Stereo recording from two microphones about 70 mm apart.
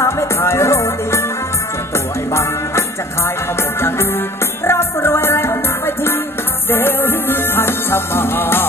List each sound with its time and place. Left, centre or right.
0.0 s music: left
4.6 s music: left